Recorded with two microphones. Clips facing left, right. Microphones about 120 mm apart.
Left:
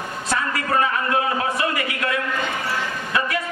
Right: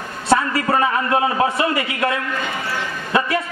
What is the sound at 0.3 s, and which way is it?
A man's voice, 30° right (ahead or behind).